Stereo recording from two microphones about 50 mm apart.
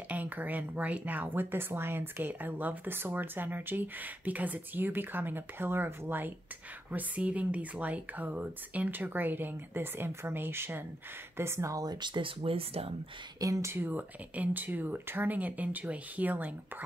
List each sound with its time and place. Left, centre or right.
0.1 s speech: right
6.9 s speech: right
13.5 s speech: right
13.7 s speech: right